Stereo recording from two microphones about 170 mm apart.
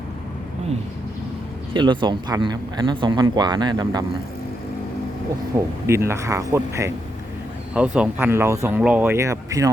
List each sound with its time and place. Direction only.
1.7 s speech: 25° right (ahead or behind)
5.5 s speech: 15° right (ahead or behind)
7.7 s speech: 5° right (ahead or behind)